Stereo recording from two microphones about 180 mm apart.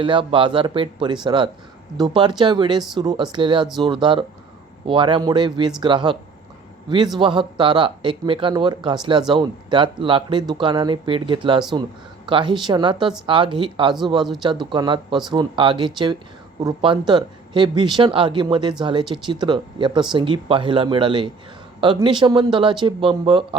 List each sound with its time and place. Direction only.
0.0 s speech: 30° right (ahead or behind)
7.2 s speech: 25° right (ahead or behind)